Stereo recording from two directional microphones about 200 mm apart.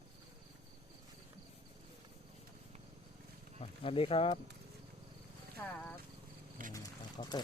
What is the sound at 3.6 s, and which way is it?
Speech, 30° left (ahead or behind).